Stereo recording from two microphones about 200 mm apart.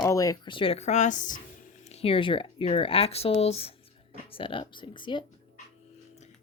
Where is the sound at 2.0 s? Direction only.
25° left (ahead or behind).